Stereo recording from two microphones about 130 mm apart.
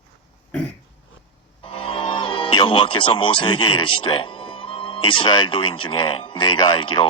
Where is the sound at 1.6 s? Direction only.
45° left (ahead or behind).